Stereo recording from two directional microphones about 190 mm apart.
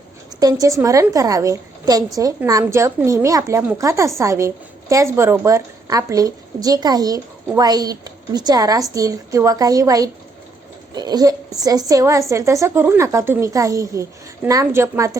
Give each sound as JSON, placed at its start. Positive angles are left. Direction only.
{"t": 0.3, "sound": "a woman's voice", "side_deg": -20}